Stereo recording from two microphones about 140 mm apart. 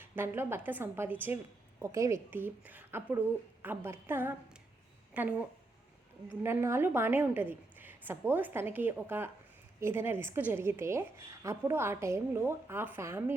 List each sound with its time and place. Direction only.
0.0 s a woman's voice: 15° right (ahead or behind)